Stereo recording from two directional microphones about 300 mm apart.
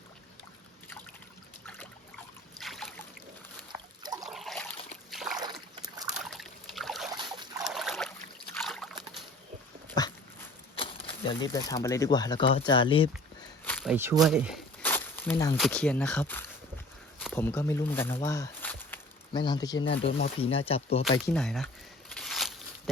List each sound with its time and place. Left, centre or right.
2.6 s boat: centre
4.0 s trickle: centre
4.3 s a sound: centre
5.4 s boat: centre
6.2 s boat: centre
7.1 s boat: centre
7.6 s a sound: centre
8.5 s trickle: centre
10.0 s dog: centre
11.3 s speech: centre
13.7 s a sound: centre
13.9 s speech: centre
21.2 s speech: centre
22.1 s a sound: centre